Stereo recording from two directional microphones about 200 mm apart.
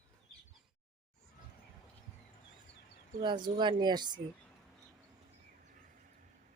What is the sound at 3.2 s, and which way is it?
Speech, 25° right (ahead or behind).